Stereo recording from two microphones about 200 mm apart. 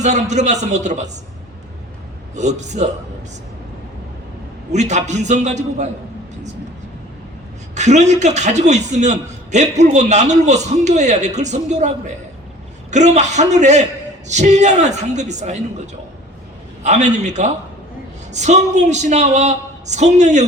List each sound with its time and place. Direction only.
0.0 s a man's voice: 35° right (ahead or behind)
2.3 s a man's voice: 35° right (ahead or behind)
4.7 s a man's voice: 35° right (ahead or behind)
7.8 s a man's voice: 35° right (ahead or behind)
16.8 s a man's voice: 35° right (ahead or behind)